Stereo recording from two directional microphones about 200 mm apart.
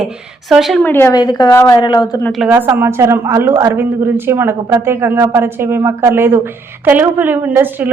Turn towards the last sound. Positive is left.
turn(degrees=-10)  # may be behind; listen again after turning